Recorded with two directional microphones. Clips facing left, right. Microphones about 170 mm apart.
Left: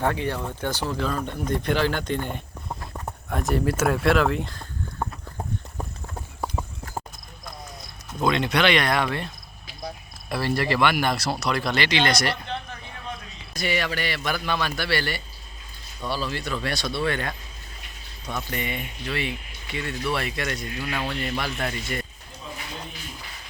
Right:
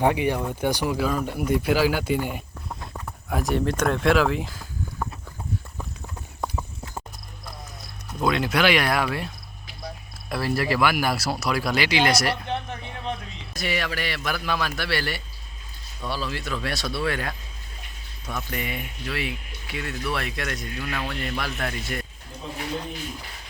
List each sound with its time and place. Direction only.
0.0 s speech: 15° right (ahead or behind)
8.2 s speech: 5° right (ahead or behind)
12.5 s a sound: 20° right (ahead or behind)
13.5 s speech: centre (ahead or behind)